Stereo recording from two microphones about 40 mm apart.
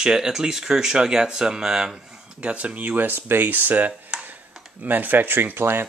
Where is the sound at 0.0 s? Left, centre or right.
Centre.